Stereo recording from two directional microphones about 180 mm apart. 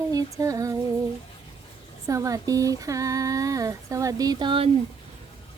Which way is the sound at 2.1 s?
20° right (ahead or behind).